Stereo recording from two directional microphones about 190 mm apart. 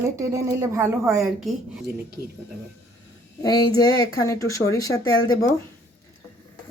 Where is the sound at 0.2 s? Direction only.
15° right (ahead or behind).